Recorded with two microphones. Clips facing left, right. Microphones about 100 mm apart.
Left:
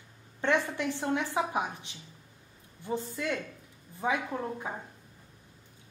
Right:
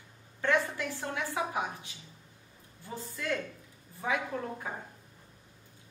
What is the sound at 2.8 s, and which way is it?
Speech, 20° left (ahead or behind).